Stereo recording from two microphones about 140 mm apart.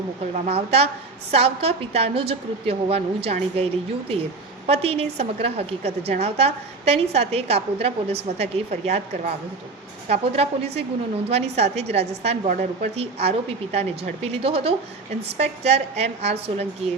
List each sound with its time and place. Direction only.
0.3 s a woman's voice: 50° right (ahead or behind)